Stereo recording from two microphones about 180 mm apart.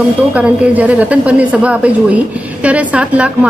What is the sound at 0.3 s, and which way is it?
A woman's voice, 5° right (ahead or behind).